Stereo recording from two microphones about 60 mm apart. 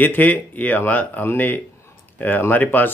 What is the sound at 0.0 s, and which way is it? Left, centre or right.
Speech, left.